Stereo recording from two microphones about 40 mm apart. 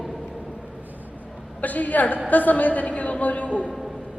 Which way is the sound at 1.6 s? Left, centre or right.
Left.